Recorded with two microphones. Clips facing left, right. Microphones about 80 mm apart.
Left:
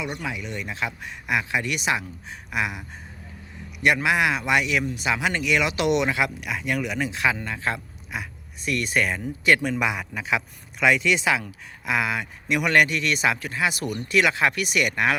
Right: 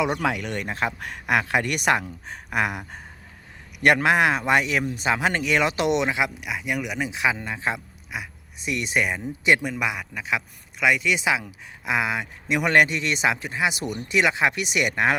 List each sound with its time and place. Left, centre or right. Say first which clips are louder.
0.0 s speech: right 7 dB; right
3.8 s speech: right 2 dB; right; by 7.8 s centre
8.1 s speech: left 1 dB; centre
8.6 s speech: even; centre
9.6 s speech: left 2 dB; centre; by 15.1 s right